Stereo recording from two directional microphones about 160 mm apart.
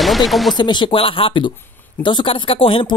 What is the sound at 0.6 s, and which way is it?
Speech, 30° left (ahead or behind).